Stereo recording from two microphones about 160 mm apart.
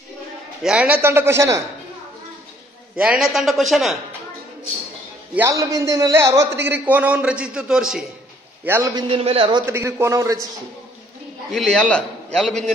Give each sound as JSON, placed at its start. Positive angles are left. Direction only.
{"t": 0.6, "sound": "a man's voice", "side_deg": -5}
{"t": 3.0, "sound": "a man's voice", "side_deg": -5}
{"t": 5.3, "sound": "a man's voice", "side_deg": -15}
{"t": 8.6, "sound": "a man's voice", "side_deg": -15}
{"t": 8.9, "sound": "a man's voice", "side_deg": -35}
{"t": 9.7, "sound": "a man's voice", "side_deg": -15}
{"t": 11.5, "sound": "a man's voice", "side_deg": 5}